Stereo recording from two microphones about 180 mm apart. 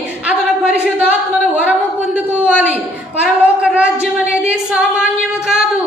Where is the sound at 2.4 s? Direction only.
5° right (ahead or behind).